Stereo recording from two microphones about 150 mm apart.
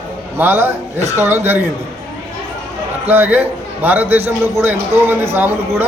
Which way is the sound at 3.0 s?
10° right (ahead or behind).